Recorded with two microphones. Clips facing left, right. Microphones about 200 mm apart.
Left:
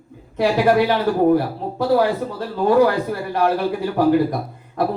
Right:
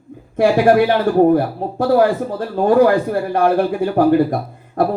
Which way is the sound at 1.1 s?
50° right (ahead or behind).